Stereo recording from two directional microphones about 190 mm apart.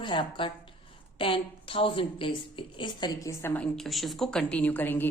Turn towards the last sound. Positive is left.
turn(degrees=10)  # may be behind; listen again after turning